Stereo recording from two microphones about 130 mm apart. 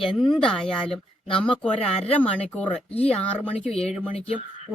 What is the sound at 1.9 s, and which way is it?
Speech, 50° left (ahead or behind).